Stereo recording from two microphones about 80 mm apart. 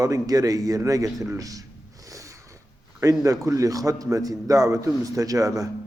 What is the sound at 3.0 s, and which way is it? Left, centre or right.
A man's voice, right.